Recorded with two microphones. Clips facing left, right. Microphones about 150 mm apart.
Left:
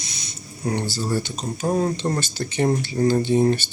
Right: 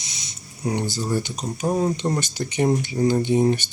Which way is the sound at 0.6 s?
15° right (ahead or behind).